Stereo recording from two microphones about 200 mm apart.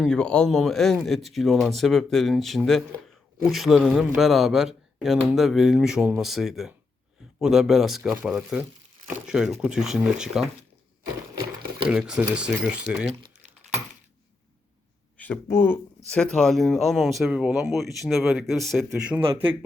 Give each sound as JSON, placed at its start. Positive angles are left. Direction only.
{"t": 0.0, "sound": "speech", "side_deg": 5}
{"t": 11.9, "sound": "speech", "side_deg": -5}
{"t": 15.2, "sound": "speech", "side_deg": 10}
{"t": 19.2, "sound": "speech", "side_deg": -25}